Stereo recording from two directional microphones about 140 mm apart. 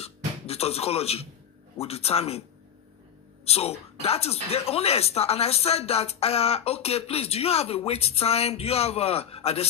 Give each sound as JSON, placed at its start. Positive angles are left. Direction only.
{"t": 0.0, "sound": "music", "side_deg": 45}
{"t": 1.8, "sound": "speech", "side_deg": 45}
{"t": 3.4, "sound": "speech", "side_deg": 45}